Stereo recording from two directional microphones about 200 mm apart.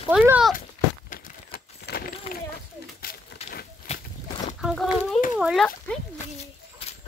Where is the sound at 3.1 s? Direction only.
45° left (ahead or behind).